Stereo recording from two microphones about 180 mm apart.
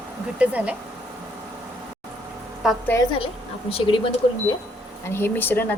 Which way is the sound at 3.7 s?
30° left (ahead or behind).